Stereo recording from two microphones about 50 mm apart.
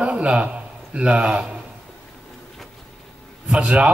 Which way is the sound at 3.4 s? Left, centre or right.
Centre.